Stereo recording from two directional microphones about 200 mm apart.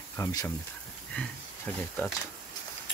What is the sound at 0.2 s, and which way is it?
Speech, 20° left (ahead or behind).